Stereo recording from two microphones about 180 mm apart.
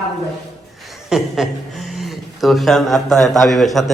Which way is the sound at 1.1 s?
Centre (ahead or behind).